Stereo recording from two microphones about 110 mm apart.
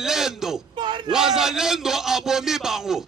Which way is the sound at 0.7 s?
45° right (ahead or behind).